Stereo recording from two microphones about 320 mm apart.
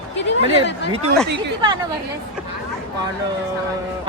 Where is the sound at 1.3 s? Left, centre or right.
Centre.